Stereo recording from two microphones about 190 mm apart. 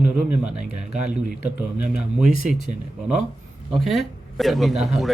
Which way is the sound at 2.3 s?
50° left (ahead or behind).